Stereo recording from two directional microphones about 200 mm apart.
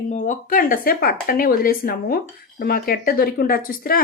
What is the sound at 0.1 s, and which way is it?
Speech, 40° left (ahead or behind).